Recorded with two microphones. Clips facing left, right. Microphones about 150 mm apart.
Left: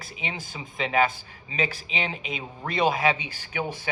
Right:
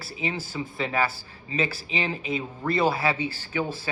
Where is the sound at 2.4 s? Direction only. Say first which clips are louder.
Right 1 dB; 15° left (ahead or behind).